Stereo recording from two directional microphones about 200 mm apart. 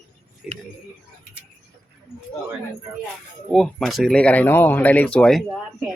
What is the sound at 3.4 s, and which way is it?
Speech, centre (ahead or behind).